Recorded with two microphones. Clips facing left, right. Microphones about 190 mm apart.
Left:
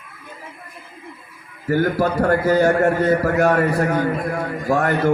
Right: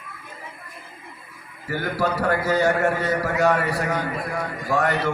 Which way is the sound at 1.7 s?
50° left (ahead or behind).